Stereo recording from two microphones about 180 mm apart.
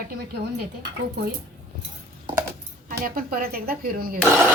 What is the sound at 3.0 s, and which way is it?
A woman's voice, 55° right (ahead or behind).